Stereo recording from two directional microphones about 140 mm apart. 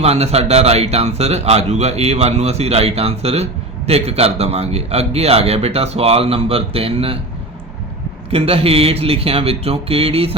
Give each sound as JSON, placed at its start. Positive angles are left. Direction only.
{"t": 0.0, "sound": "speech", "side_deg": -45}
{"t": 8.3, "sound": "speech", "side_deg": -45}